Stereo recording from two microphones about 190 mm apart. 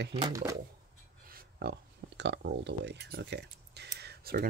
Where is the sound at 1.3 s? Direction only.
55° right (ahead or behind).